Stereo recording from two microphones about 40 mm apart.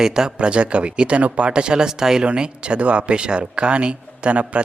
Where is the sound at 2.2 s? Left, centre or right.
Right.